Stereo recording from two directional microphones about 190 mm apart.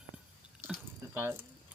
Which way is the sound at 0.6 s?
10° right (ahead or behind).